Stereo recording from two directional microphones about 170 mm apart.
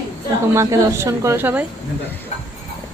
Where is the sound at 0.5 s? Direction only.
15° right (ahead or behind).